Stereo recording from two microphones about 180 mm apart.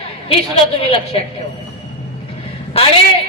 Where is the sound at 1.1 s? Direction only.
30° left (ahead or behind).